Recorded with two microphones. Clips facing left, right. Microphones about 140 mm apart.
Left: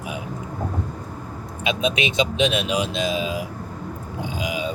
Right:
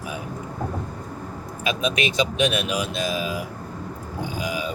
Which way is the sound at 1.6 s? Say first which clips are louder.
Left 1 dB; 25° left (ahead or behind).